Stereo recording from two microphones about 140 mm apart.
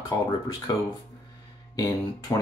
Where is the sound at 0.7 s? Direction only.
25° left (ahead or behind).